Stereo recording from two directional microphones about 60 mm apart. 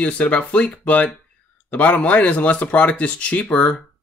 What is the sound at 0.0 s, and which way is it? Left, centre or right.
Speech, left.